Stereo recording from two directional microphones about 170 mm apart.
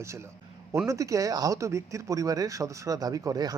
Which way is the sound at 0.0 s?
15° right (ahead or behind).